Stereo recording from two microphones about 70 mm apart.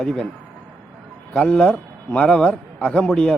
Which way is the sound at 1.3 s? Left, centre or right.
Centre.